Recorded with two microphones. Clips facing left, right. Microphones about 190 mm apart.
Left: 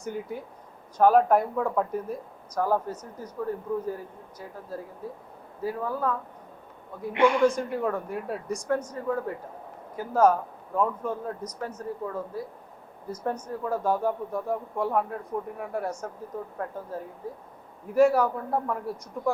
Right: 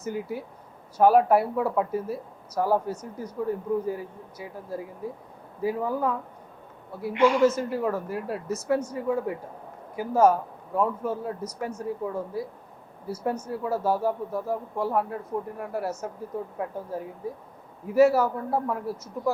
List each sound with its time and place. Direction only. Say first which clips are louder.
0.0 s speech: right 2 dB; 5° right (ahead or behind)
7.1 s a man's voice: right 1 dB; 60° left (ahead or behind)
7.3 s speech: right 1 dB; 5° right (ahead or behind)